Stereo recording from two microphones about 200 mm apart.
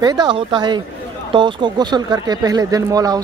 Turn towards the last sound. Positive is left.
turn(degrees=-20)  # may be behind; listen again after turning